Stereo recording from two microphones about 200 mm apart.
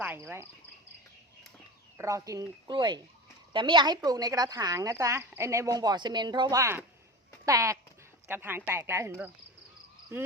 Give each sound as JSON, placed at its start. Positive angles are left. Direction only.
{"t": 0.0, "sound": "cricket", "side_deg": -10}
{"t": 2.0, "sound": "speech", "side_deg": -15}